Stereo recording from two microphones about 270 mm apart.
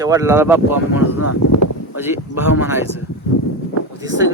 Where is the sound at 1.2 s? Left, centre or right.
Left.